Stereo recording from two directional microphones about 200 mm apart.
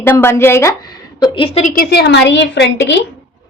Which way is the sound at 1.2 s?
25° left (ahead or behind).